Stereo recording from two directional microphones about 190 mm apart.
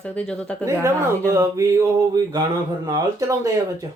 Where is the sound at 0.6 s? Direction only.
15° right (ahead or behind).